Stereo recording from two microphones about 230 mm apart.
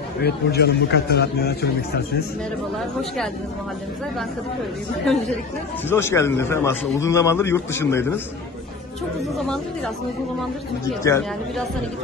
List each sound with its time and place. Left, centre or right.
0.2 s a man's voice: left
5.9 s a man's voice: centre
11.1 s a man's voice: centre